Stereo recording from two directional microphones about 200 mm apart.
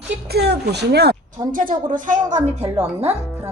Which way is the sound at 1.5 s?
40° right (ahead or behind).